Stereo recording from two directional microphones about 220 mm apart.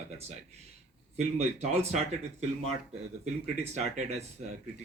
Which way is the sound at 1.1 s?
30° right (ahead or behind).